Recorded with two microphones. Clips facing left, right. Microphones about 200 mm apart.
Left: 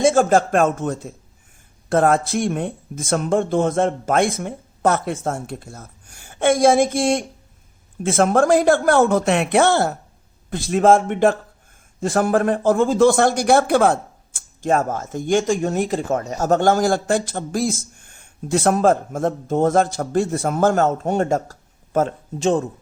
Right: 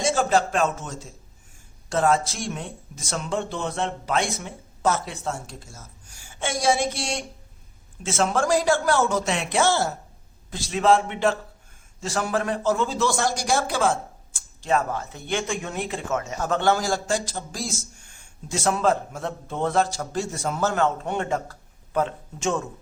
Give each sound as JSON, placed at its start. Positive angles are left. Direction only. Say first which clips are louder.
{"t": 0.0, "sound": "speech", "louder": "left 7 dB", "side_deg": 50}
{"t": 14.6, "sound": "speech", "louder": "left 4 dB", "side_deg": 45}